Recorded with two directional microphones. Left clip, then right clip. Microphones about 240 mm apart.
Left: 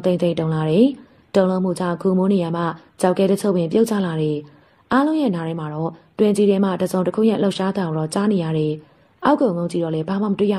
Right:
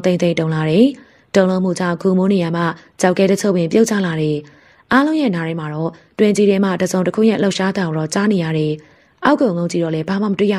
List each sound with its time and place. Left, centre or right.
0.0 s a woman's voice: right